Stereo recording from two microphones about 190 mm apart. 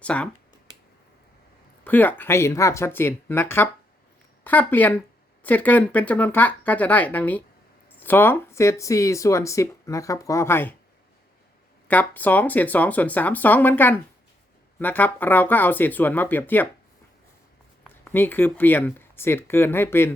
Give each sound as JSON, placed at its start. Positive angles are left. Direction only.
{"t": 0.0, "sound": "speech", "side_deg": 5}
{"t": 1.8, "sound": "speech", "side_deg": 10}
{"t": 11.9, "sound": "speech", "side_deg": 10}
{"t": 18.0, "sound": "speech", "side_deg": 10}